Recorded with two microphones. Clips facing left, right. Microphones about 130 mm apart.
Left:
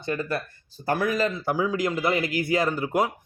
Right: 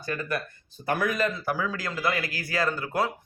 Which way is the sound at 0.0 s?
25° left (ahead or behind).